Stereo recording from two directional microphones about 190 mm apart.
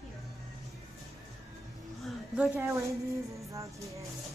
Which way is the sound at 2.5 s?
15° right (ahead or behind).